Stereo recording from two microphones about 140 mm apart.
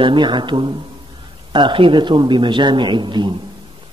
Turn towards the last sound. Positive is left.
turn(degrees=-35)  # may be behind; listen again after turning